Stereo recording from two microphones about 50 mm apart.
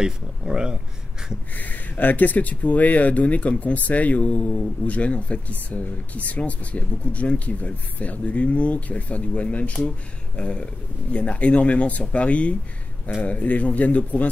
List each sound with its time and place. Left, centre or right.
0.0 s speech: centre
1.5 s a man's voice: left